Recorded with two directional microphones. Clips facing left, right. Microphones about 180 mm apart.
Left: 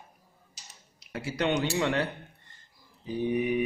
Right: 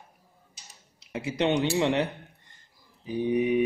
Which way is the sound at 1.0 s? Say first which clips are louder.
Right 3 dB; 20° right (ahead or behind).